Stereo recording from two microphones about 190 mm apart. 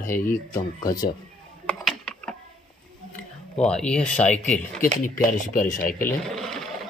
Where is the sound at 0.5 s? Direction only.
20° left (ahead or behind).